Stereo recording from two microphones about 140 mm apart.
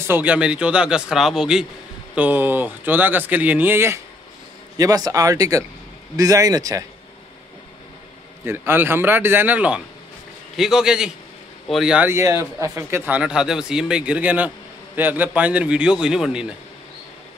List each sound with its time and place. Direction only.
0.0 s speech: 15° right (ahead or behind)
8.5 s speech: 15° right (ahead or behind)
12.1 s speech: 20° right (ahead or behind)